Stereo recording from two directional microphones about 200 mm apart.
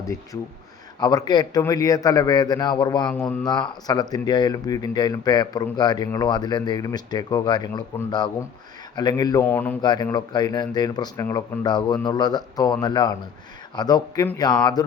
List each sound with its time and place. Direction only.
0.9 s speech: 20° left (ahead or behind)
3.1 s speech: 5° left (ahead or behind)
3.4 s speech: 20° left (ahead or behind)
9.8 s speech: 20° left (ahead or behind)